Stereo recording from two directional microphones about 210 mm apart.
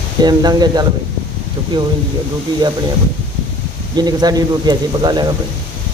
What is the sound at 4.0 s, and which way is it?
Speech, 20° right (ahead or behind).